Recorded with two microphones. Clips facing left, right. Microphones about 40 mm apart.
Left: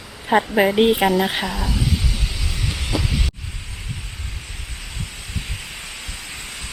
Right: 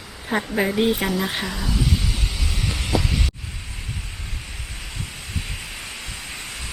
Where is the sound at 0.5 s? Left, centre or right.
Left.